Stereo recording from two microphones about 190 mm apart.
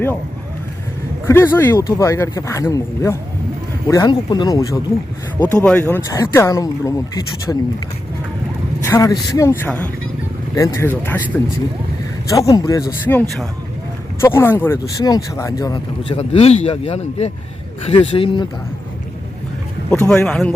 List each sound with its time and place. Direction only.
1.3 s speech: 10° left (ahead or behind)
5.4 s speech: 10° left (ahead or behind)
8.9 s speech: 15° left (ahead or behind)
12.3 s speech: 15° left (ahead or behind)
13.1 s speech: 5° left (ahead or behind)
14.2 s speech: 15° left (ahead or behind); by 18.4 s 30° left (ahead or behind)
20.1 s speech: 5° left (ahead or behind)